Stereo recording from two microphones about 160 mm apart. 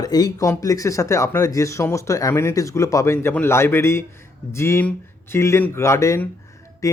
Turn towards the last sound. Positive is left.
turn(degrees=20)  # may be behind; listen again after turning